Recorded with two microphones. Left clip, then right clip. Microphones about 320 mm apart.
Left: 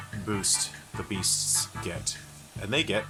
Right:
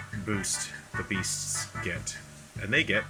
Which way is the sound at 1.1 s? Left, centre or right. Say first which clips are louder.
Left 5 dB; centre.